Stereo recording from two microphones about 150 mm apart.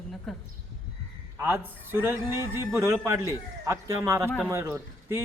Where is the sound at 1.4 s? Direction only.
15° right (ahead or behind).